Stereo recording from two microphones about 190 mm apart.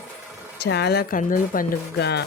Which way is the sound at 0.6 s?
60° left (ahead or behind).